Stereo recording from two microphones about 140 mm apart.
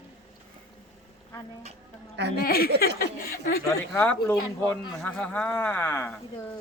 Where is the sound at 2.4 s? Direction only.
90° left.